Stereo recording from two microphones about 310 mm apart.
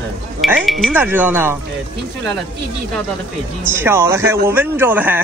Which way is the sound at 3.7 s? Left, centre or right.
Centre.